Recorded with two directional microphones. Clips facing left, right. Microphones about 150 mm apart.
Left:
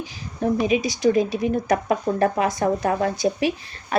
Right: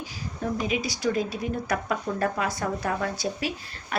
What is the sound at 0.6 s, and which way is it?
A woman's voice, 20° left (ahead or behind).